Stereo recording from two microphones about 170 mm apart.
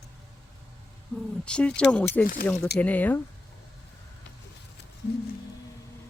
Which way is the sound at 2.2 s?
60° left (ahead or behind).